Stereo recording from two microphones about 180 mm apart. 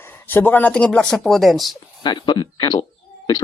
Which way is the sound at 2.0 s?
25° left (ahead or behind).